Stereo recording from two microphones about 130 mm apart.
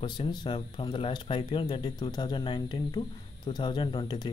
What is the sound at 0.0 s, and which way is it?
Speech, 35° left (ahead or behind).